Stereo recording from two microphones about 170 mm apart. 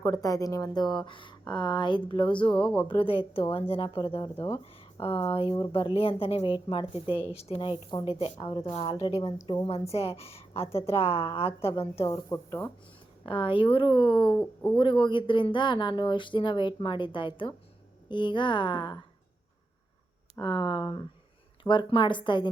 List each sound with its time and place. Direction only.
0.0 s speech: 20° left (ahead or behind)
12.3 s speech: 15° left (ahead or behind)
13.2 s speech: 30° left (ahead or behind)
14.3 s speech: 5° left (ahead or behind)
14.8 s speech: 30° left (ahead or behind)
20.4 s speech: 25° left (ahead or behind)